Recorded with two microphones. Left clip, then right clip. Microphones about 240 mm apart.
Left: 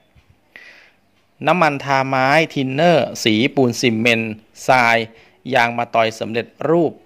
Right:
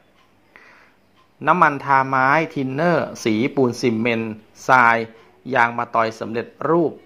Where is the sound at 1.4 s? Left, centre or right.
Left.